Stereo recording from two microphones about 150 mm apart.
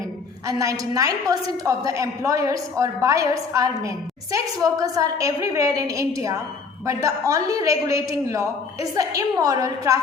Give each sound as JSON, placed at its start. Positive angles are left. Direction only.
{"t": 0.4, "sound": "a woman's voice", "side_deg": -20}